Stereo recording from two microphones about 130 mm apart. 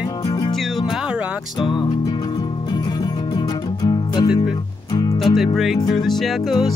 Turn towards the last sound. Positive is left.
turn(degrees=0)  # may be behind; listen again after turning